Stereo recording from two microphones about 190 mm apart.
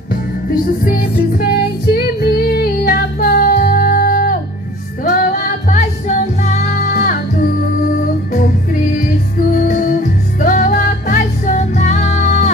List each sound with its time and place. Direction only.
0.1 s music: 50° left (ahead or behind)
8.9 s music: 45° left (ahead or behind)